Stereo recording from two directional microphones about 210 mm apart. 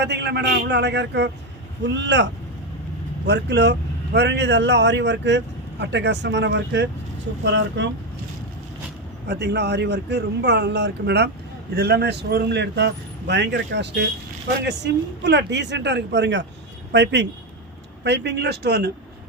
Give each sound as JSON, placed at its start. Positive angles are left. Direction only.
{"t": 0.0, "sound": "a man's voice", "side_deg": -55}
{"t": 9.2, "sound": "a man's voice", "side_deg": -50}
{"t": 15.2, "sound": "a man's voice", "side_deg": -55}